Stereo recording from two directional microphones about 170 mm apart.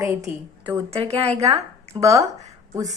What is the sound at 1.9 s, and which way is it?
Speech, 25° right (ahead or behind).